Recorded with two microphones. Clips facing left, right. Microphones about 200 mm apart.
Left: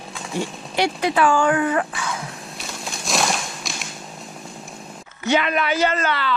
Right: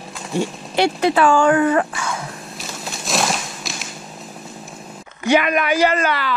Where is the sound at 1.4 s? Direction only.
40° right (ahead or behind).